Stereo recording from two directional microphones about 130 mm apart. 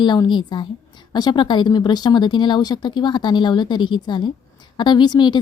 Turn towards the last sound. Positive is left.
turn(degrees=35)  # may be behind; listen again after turning